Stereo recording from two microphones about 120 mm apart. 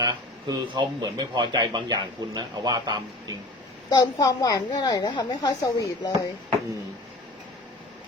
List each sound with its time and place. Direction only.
0.0 s speech: 35° right (ahead or behind)
3.8 s a woman's voice: 30° left (ahead or behind)